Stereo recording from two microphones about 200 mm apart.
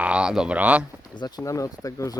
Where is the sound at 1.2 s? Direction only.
15° left (ahead or behind).